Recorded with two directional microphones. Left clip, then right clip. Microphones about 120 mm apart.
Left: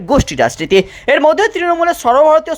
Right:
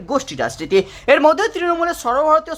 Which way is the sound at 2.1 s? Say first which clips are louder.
Left 5 dB; 30° left (ahead or behind).